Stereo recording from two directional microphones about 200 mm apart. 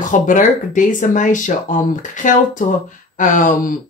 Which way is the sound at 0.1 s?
40° left (ahead or behind).